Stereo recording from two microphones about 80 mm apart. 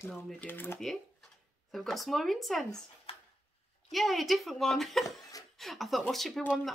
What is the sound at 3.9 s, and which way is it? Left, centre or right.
Speech, centre.